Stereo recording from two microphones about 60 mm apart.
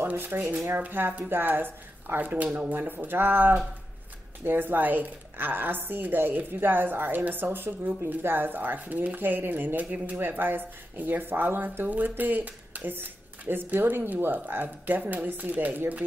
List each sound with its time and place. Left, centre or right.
0.0 s a woman's voice: right